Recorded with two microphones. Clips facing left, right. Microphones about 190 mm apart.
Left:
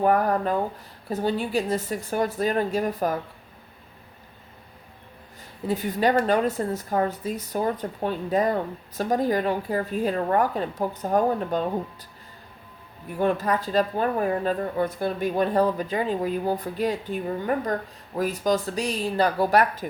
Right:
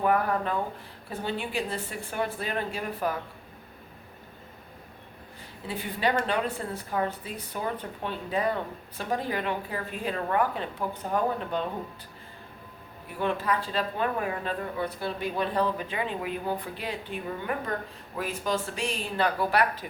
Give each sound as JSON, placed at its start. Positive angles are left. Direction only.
{"t": 0.0, "sound": "a woman's voice", "side_deg": 40}
{"t": 5.6, "sound": "a woman's voice", "side_deg": 45}
{"t": 13.1, "sound": "a woman's voice", "side_deg": 45}